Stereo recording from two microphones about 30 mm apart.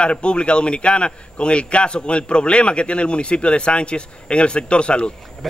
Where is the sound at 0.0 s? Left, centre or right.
Left.